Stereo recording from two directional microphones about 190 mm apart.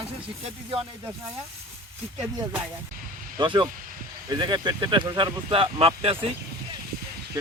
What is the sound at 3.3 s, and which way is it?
Speech, 25° right (ahead or behind).